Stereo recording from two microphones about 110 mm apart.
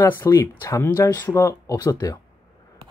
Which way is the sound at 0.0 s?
25° left (ahead or behind).